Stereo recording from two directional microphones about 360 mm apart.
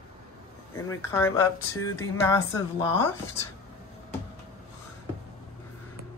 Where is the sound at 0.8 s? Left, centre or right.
Centre.